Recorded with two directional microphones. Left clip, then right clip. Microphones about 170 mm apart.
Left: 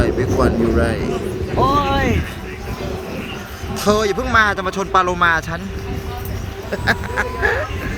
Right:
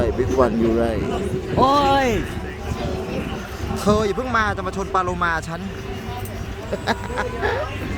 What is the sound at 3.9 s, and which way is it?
Speech, 5° left (ahead or behind).